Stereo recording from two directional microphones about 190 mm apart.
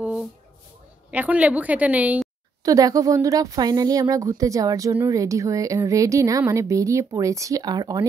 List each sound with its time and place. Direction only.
1.1 s speech: 10° right (ahead or behind)
2.6 s speech: 20° right (ahead or behind)